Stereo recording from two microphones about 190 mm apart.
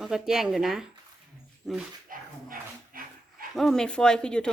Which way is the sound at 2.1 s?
50° right (ahead or behind).